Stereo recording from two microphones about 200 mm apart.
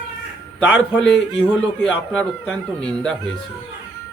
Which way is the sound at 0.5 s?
5° left (ahead or behind).